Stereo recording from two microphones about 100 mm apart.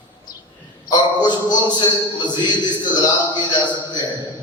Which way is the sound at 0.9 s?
45° left (ahead or behind).